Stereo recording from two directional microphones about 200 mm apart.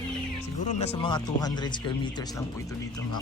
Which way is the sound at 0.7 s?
30° left (ahead or behind).